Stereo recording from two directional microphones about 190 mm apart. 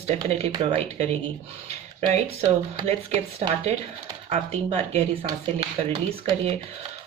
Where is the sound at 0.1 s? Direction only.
35° right (ahead or behind).